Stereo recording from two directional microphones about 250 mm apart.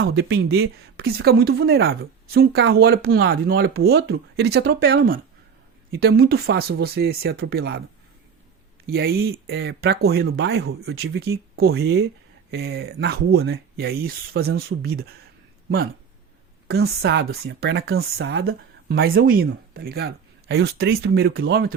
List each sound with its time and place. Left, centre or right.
0.0 s speech: right
8.9 s speech: right
16.6 s speech: right